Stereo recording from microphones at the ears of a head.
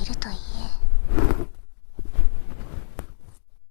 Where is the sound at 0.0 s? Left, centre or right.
Left.